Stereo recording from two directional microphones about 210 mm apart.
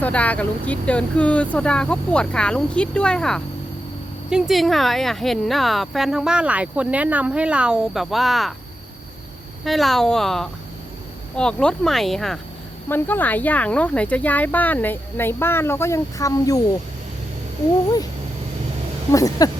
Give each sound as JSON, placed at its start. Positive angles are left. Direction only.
{"t": 0.0, "sound": "speech", "side_deg": 5}
{"t": 9.6, "sound": "speech", "side_deg": 0}
{"t": 19.1, "sound": "speech", "side_deg": 15}